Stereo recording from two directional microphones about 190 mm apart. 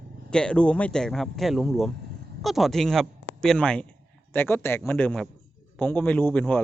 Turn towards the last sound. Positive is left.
turn(degrees=5)  # may be behind; listen again after turning